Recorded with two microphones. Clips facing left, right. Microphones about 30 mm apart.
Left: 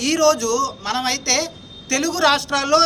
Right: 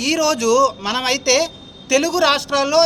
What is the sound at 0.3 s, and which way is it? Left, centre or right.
Speech, right.